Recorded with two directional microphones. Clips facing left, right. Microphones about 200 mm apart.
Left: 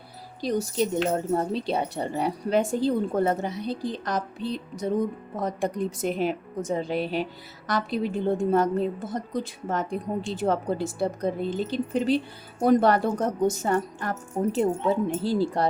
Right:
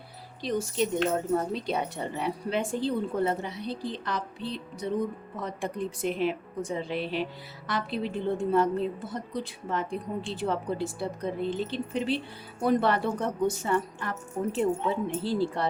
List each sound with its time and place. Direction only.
0.4 s a woman's voice: 40° left (ahead or behind)